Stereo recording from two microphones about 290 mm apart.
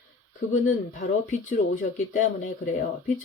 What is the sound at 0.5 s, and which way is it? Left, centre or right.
Speech, left.